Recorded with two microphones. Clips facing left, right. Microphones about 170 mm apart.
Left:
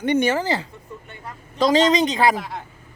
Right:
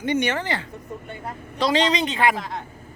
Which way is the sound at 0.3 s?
35° left (ahead or behind).